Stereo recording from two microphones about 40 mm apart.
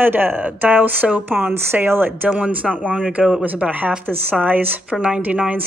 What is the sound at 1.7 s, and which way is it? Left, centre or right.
Speech, right.